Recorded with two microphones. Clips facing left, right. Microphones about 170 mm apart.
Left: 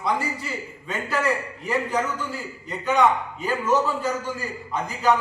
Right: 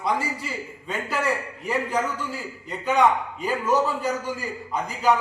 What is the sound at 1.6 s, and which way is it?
A man's voice, 10° right (ahead or behind).